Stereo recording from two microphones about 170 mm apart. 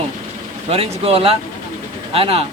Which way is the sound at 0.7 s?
35° right (ahead or behind).